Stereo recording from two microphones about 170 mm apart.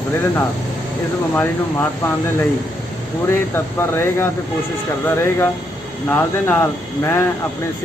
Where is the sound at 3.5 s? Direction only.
15° left (ahead or behind).